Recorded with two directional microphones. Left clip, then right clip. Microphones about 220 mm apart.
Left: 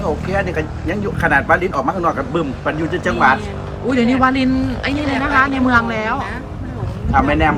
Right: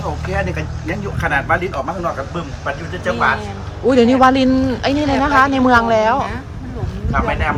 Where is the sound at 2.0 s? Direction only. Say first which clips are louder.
Left 4 dB; 30° left (ahead or behind).